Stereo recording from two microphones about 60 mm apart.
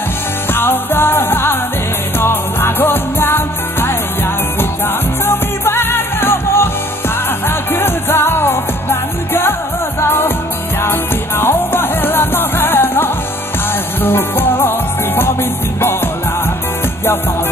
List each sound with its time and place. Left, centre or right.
0.6 s music: left
5.2 s music: left